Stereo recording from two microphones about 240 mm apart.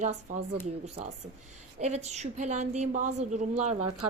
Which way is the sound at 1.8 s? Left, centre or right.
Right.